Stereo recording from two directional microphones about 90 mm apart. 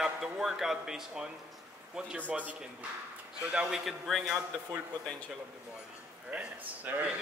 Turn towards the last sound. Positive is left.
turn(degrees=-20)  # may be behind; listen again after turning